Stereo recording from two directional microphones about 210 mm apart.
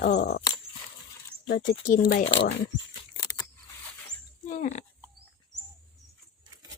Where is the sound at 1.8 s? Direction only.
40° left (ahead or behind).